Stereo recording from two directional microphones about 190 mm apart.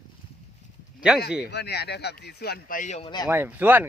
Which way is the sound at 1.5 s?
60° left (ahead or behind).